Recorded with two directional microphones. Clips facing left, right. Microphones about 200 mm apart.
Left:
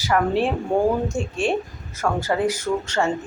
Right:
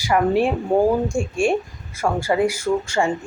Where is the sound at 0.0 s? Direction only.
10° right (ahead or behind).